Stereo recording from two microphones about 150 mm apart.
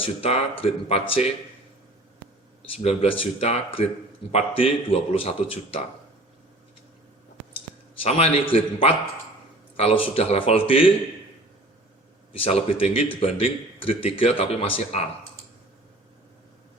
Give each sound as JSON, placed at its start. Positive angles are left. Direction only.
{"t": 0.0, "sound": "speech", "side_deg": 40}
{"t": 2.7, "sound": "speech", "side_deg": 45}
{"t": 8.0, "sound": "speech", "side_deg": 40}
{"t": 12.3, "sound": "speech", "side_deg": 40}